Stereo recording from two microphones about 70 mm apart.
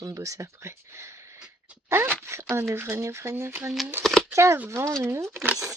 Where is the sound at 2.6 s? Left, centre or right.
Right.